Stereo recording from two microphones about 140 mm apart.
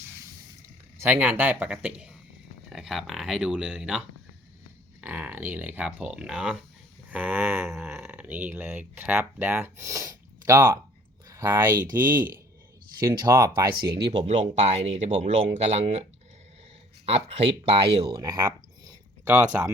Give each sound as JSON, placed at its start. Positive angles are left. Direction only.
{"t": 1.0, "sound": "speech", "side_deg": -15}
{"t": 7.1, "sound": "a sound", "side_deg": -10}
{"t": 8.0, "sound": "speech", "side_deg": -10}
{"t": 14.1, "sound": "speech", "side_deg": -50}
{"t": 17.1, "sound": "speech", "side_deg": -45}
{"t": 19.2, "sound": "speech", "side_deg": -10}